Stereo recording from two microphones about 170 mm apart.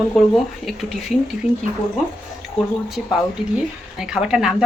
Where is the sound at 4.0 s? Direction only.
Centre (ahead or behind).